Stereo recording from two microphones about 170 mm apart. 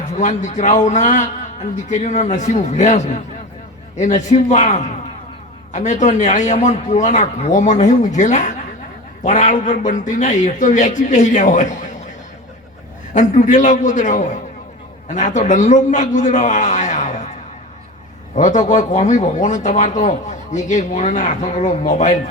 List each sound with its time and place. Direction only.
0.1 s a man's voice: 45° left (ahead or behind)
13.1 s a man's voice: 45° left (ahead or behind)
18.3 s a man's voice: 45° left (ahead or behind)